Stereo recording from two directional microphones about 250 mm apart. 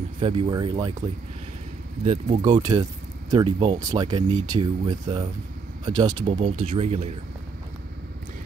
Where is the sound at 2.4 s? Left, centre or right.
Centre.